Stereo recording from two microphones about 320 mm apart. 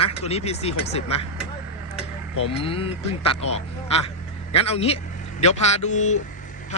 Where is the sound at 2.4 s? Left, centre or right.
Centre.